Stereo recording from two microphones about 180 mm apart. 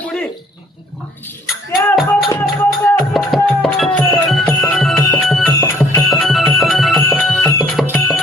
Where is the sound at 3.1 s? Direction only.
Centre (ahead or behind).